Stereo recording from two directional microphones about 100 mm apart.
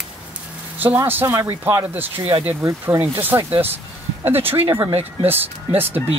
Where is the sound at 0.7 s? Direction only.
20° right (ahead or behind).